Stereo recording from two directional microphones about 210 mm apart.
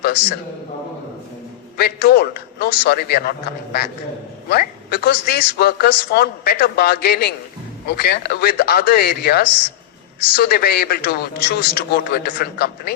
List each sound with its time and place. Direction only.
0.0 s a man's voice: 50° left (ahead or behind)
1.8 s a man's voice: 45° left (ahead or behind)